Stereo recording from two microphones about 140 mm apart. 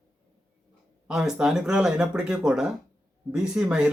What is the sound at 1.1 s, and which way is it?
Speech, 5° right (ahead or behind).